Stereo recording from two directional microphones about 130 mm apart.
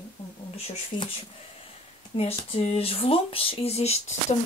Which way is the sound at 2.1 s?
50° left (ahead or behind).